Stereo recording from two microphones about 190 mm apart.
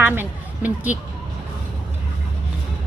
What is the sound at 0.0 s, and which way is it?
Speech, 10° right (ahead or behind).